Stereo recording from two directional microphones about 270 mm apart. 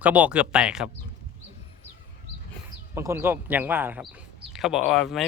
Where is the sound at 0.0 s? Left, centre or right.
Centre.